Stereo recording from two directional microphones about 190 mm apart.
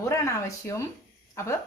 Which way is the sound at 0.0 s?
15° left (ahead or behind).